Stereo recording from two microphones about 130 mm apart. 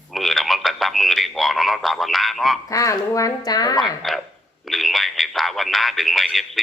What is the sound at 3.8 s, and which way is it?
Speech, centre (ahead or behind).